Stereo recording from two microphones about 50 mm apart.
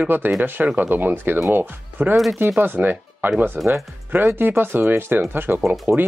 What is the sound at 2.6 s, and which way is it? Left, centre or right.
Speech, right.